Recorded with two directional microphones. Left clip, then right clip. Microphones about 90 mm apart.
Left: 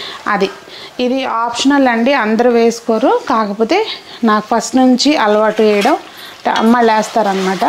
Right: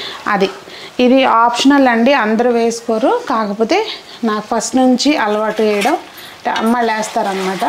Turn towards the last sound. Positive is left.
turn(degrees=30)  # may be behind; listen again after turning